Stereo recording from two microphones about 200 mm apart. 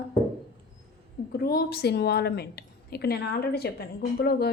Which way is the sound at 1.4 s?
50° left (ahead or behind).